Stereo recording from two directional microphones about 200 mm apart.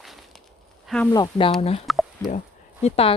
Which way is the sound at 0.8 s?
5° left (ahead or behind).